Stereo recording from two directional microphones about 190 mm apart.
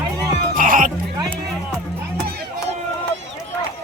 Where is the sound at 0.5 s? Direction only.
45° right (ahead or behind).